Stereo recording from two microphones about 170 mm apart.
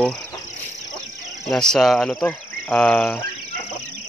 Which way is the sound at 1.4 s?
5° left (ahead or behind).